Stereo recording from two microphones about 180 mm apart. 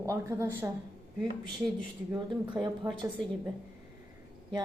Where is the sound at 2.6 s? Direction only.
20° right (ahead or behind).